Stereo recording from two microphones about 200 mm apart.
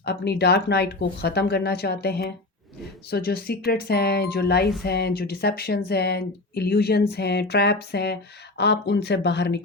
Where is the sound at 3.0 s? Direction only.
50° left (ahead or behind).